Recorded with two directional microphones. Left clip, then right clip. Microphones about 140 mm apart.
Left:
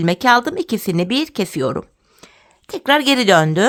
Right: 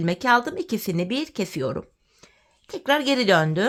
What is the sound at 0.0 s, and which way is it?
A woman's voice, 35° left (ahead or behind).